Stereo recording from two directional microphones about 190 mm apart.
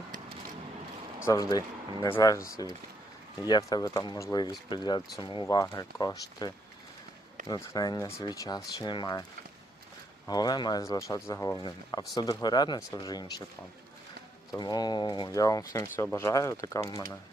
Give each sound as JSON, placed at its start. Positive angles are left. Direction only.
{"t": 1.2, "sound": "speech", "side_deg": 15}
{"t": 10.2, "sound": "speech", "side_deg": 20}
{"t": 14.6, "sound": "speech", "side_deg": 20}